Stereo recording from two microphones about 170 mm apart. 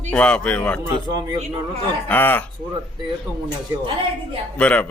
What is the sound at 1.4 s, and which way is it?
Speech, 40° right (ahead or behind).